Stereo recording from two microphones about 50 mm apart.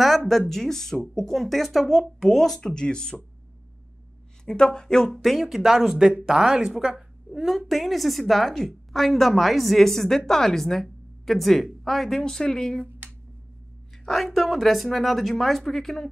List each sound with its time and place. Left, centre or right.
0.3 s a woman's voice: centre
2.7 s speech: centre
4.5 s a woman's voice: centre
7.4 s a woman's voice: centre
12.2 s speech: centre
14.0 s a woman's voice: centre